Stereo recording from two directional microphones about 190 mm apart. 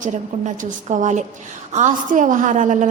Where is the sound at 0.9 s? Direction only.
40° right (ahead or behind).